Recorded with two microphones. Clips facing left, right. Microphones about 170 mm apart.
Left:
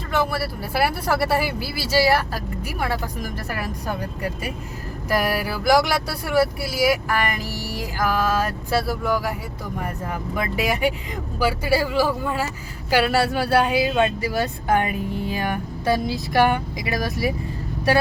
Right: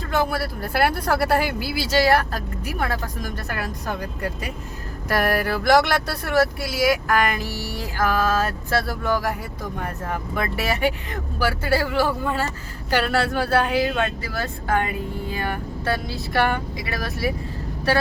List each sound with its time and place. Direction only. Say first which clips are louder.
0.3 s speech: even; 5° left (ahead or behind)